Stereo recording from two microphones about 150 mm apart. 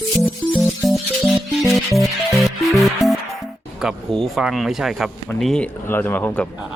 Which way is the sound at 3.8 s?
Centre (ahead or behind).